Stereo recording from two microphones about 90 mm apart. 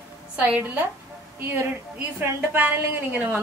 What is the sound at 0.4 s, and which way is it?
A woman's voice, 20° right (ahead or behind).